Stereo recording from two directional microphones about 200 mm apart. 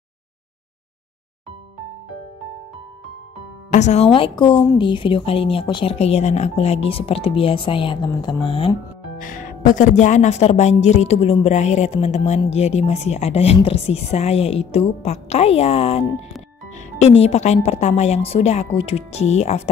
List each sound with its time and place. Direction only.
3.7 s speech: 35° left (ahead or behind)
9.2 s speech: 40° left (ahead or behind)
17.2 s speech: 30° left (ahead or behind)